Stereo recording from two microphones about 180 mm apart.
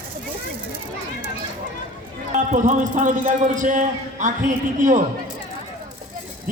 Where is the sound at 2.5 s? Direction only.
45° right (ahead or behind).